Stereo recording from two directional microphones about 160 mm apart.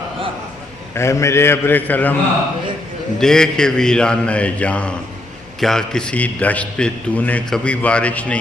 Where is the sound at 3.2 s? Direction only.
5° left (ahead or behind).